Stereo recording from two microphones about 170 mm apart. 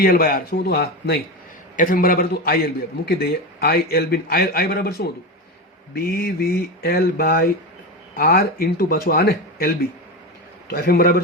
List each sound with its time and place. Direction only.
0.0 s speech: 60° left (ahead or behind)
1.7 s a man's voice: 50° left (ahead or behind)
3.1 s a man's voice: 70° left (ahead or behind)